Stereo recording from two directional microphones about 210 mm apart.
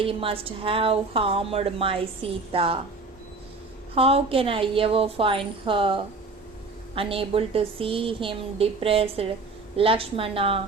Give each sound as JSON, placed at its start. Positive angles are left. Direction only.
{"t": 0.0, "sound": "a woman's voice", "side_deg": -25}
{"t": 3.9, "sound": "a woman's voice", "side_deg": -25}